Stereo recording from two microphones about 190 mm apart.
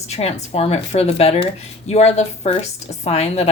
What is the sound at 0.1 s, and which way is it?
A woman's voice, 35° left (ahead or behind).